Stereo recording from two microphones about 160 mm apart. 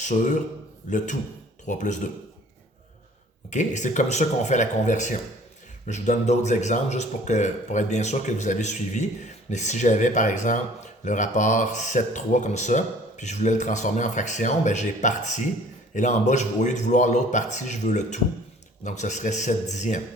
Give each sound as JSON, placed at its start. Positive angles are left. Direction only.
{"t": 0.0, "sound": "a man's voice", "side_deg": 50}
{"t": 3.5, "sound": "speech", "side_deg": 50}